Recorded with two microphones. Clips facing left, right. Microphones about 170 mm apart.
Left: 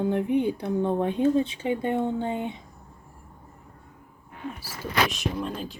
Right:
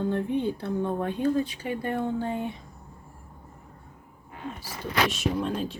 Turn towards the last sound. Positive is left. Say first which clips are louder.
# right 3 dB
turn(degrees=0)  # may be behind; listen again after turning